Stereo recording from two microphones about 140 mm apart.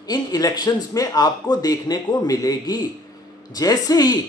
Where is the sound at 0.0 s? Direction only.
30° left (ahead or behind).